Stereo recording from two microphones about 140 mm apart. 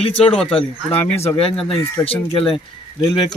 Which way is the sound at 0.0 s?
40° left (ahead or behind).